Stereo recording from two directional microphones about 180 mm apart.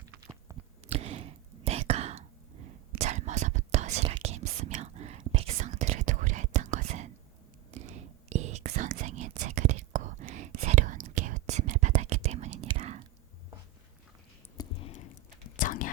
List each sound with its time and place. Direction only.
0.9 s whispering: 35° right (ahead or behind)
14.6 s a sound: 30° left (ahead or behind)
15.6 s whispering: 50° left (ahead or behind)